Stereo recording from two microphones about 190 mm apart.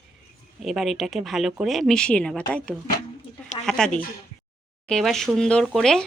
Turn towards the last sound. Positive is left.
turn(degrees=5)  # may be behind; listen again after turning